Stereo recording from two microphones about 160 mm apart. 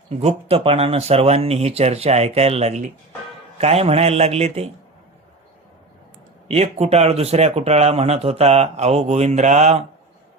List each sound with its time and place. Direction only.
0.1 s speech: 40° right (ahead or behind)
6.5 s speech: 40° right (ahead or behind)